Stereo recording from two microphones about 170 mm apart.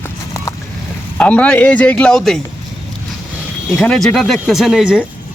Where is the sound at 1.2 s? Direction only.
10° left (ahead or behind).